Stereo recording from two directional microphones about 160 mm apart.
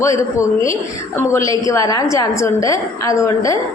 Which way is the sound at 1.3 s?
20° left (ahead or behind).